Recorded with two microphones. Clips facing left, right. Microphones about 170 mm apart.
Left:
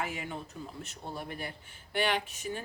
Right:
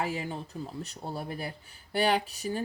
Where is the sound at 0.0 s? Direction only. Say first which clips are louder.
Right 4 dB; 35° right (ahead or behind).